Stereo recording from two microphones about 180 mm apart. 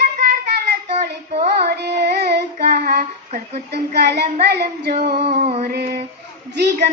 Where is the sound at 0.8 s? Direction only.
40° right (ahead or behind).